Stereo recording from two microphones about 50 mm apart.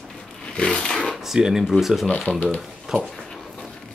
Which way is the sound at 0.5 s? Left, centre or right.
Left.